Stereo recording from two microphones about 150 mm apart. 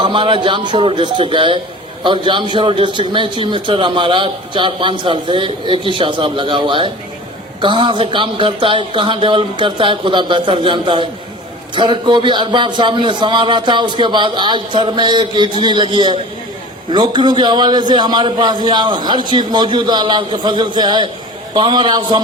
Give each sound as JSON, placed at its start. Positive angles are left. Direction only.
{"t": 0.0, "sound": "a man's voice", "side_deg": -35}